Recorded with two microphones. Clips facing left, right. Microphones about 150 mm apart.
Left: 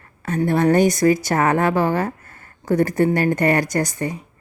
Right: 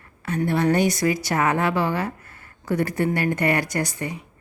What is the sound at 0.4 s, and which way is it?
A woman's voice, 45° left (ahead or behind).